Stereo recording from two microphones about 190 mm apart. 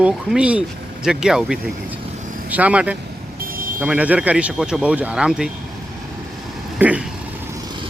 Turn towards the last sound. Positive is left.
turn(degrees=-10)  # may be behind; listen again after turning